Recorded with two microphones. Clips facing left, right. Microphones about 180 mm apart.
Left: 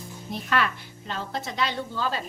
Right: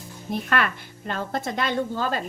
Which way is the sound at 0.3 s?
55° right (ahead or behind).